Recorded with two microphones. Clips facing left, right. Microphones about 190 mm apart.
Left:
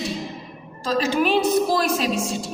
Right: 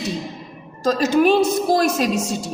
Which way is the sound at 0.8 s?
45° right (ahead or behind).